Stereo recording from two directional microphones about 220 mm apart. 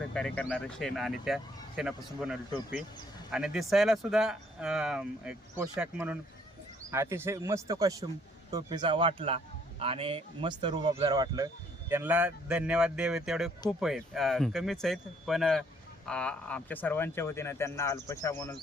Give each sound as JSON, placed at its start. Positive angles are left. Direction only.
{"t": 0.1, "sound": "speech", "side_deg": 5}
{"t": 3.3, "sound": "speech", "side_deg": -5}